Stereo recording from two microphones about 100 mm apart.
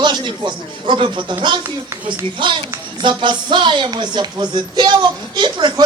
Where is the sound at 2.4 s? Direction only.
50° right (ahead or behind).